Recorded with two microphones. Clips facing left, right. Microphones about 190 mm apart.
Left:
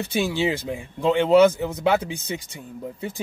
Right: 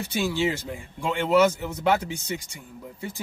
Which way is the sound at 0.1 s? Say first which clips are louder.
Left 2 dB; 15° left (ahead or behind).